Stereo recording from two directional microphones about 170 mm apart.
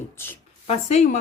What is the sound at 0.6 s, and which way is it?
Speech, 40° left (ahead or behind).